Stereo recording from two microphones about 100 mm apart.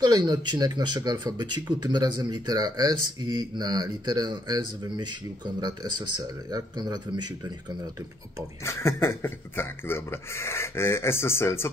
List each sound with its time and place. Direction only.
0.0 s speech: 45° right (ahead or behind)
8.6 s speech: 25° left (ahead or behind)